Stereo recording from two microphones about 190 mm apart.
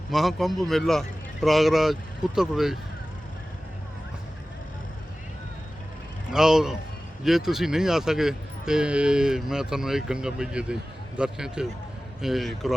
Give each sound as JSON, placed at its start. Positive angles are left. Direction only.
{"t": 0.1, "sound": "speech", "side_deg": 0}
{"t": 6.3, "sound": "speech", "side_deg": -5}